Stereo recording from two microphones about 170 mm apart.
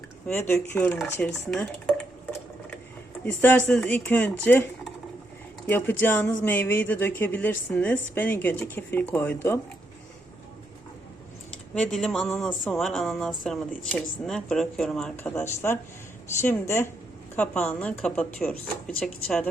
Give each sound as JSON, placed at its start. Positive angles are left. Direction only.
{"t": 0.3, "sound": "speech", "side_deg": 15}
{"t": 3.7, "sound": "speech", "side_deg": 5}
{"t": 11.5, "sound": "speech", "side_deg": 5}